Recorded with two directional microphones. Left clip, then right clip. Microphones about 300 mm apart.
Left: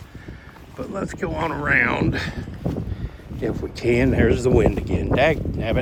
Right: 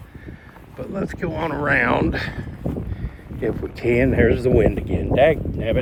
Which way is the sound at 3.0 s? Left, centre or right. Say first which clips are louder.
Right 1 dB; centre.